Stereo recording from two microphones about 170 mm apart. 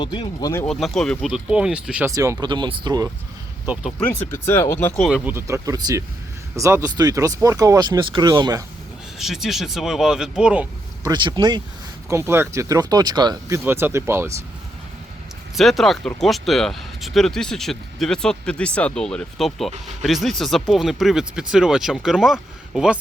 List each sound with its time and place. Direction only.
0.0 s speech: 25° left (ahead or behind)
0.5 s speech: 5° left (ahead or behind)
2.0 s speech: 20° right (ahead or behind)
3.9 s speech: 10° left (ahead or behind)
5.0 s speech: 5° right (ahead or behind)
5.3 s speech: 20° right (ahead or behind)
9.1 s speech: centre (ahead or behind)
11.0 s speech: 25° right (ahead or behind)
12.0 s speech: 15° right (ahead or behind)
15.5 s speech: centre (ahead or behind)